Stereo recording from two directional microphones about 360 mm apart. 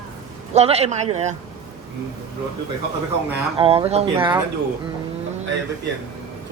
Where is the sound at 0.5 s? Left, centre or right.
Centre.